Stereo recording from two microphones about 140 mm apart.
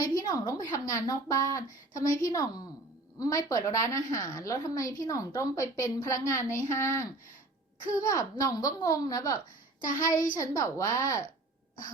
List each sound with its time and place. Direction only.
0.0 s a woman's voice: 25° left (ahead or behind)